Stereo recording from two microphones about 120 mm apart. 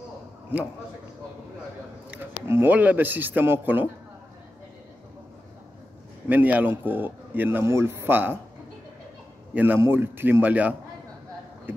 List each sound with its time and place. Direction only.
2.0 s a man's voice: 20° right (ahead or behind)
6.2 s speech: 15° right (ahead or behind)
9.5 s speech: 15° right (ahead or behind)